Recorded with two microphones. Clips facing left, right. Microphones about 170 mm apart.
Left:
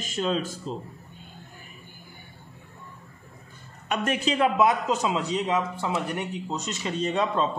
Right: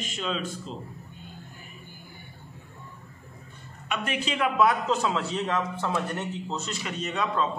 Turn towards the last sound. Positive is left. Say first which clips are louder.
# left 3 dB
turn(degrees=30)  # may be behind; listen again after turning